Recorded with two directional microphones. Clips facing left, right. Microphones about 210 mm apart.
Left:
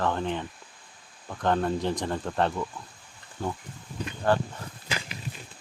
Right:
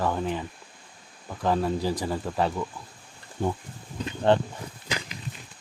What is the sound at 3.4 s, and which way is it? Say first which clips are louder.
Speech: right 4 dB; 20° right (ahead or behind).